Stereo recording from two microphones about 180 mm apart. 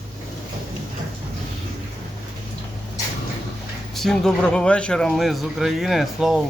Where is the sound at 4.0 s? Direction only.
5° left (ahead or behind).